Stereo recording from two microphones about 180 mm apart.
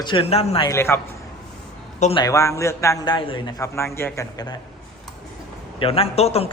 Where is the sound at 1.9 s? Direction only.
40° left (ahead or behind).